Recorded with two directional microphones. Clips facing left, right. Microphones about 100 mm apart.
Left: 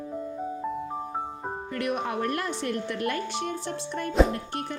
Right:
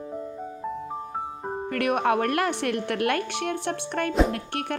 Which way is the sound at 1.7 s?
60° right (ahead or behind).